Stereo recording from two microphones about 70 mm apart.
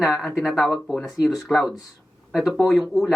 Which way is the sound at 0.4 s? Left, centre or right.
Centre.